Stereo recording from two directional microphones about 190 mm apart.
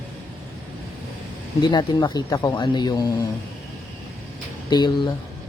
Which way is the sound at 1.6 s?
25° left (ahead or behind).